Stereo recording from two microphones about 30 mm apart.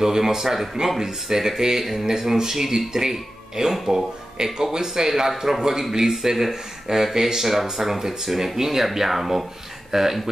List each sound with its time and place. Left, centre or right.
0.0 s speech: centre